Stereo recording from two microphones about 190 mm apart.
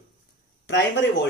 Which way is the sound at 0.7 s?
70° left (ahead or behind).